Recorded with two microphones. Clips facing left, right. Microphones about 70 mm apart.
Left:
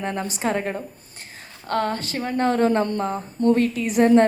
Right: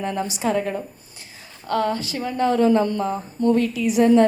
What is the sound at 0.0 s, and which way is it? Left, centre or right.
A woman's voice, left.